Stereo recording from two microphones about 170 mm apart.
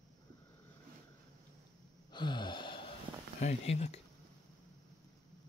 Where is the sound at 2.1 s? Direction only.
25° left (ahead or behind).